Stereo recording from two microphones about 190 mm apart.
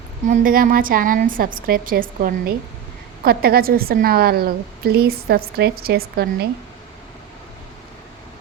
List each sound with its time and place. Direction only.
0.3 s a woman's voice: 45° right (ahead or behind)